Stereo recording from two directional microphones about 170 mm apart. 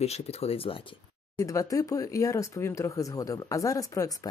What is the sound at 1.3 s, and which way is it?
Speech, 20° left (ahead or behind).